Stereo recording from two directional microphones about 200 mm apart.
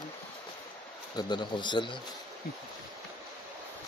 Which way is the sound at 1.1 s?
25° left (ahead or behind).